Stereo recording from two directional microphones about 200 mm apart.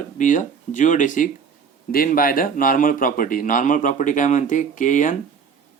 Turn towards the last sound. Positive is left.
turn(degrees=40)  # may be behind; listen again after turning